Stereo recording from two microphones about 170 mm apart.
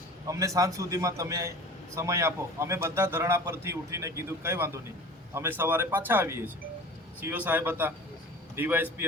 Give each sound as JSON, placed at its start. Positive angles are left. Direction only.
{"t": 0.3, "sound": "a man's voice", "side_deg": -20}